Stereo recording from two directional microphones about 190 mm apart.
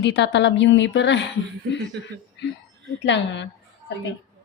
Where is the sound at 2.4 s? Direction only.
65° left (ahead or behind).